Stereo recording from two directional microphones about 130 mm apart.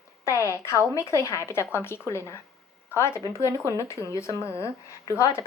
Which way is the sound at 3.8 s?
25° left (ahead or behind).